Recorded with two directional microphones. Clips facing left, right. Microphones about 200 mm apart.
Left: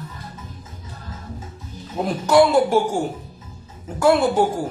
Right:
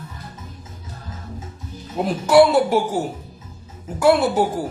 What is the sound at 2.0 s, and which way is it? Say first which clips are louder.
Speech: right 2 dB; 5° right (ahead or behind).